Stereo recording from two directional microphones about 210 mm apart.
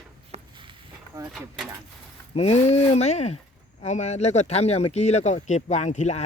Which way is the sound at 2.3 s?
30° left (ahead or behind).